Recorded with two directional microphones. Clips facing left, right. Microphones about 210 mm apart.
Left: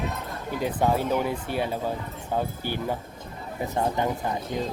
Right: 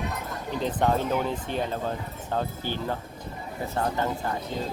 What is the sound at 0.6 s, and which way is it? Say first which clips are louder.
Speech: left 1 dB; 10° left (ahead or behind).